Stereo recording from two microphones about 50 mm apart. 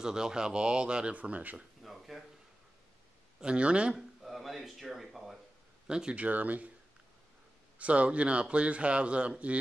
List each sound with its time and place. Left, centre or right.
0.0 s speech: centre
1.1 s speech: right
1.8 s a sound: centre
3.3 s speech: right
3.9 s speech: centre
5.9 s speech: centre
6.1 s speech: right
7.8 s speech: right